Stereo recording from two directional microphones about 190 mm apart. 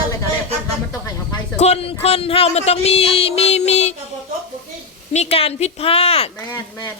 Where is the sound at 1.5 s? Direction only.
35° left (ahead or behind).